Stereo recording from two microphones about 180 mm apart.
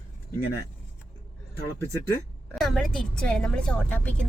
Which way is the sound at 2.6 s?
Centre (ahead or behind).